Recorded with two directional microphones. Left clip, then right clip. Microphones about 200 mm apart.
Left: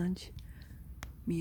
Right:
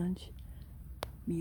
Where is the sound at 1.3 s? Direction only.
10° left (ahead or behind).